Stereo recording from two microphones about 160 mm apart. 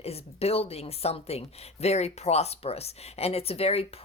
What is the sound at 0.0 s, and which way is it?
Speech, 40° left (ahead or behind).